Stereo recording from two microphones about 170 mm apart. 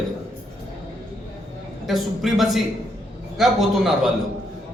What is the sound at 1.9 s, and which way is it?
A man's voice, centre (ahead or behind).